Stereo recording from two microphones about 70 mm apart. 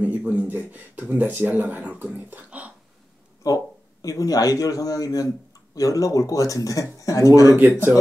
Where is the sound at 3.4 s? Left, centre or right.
Left.